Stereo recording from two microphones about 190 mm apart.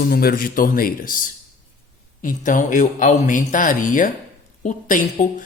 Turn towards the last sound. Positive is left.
turn(degrees=45)  # may be behind; listen again after turning